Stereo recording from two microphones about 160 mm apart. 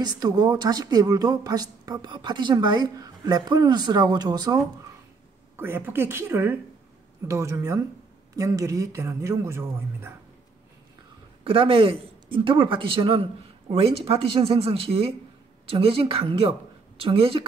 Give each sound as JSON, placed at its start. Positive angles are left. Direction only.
{"t": 0.0, "sound": "speech", "side_deg": -25}
{"t": 5.6, "sound": "a woman's voice", "side_deg": -15}
{"t": 11.4, "sound": "speech", "side_deg": -35}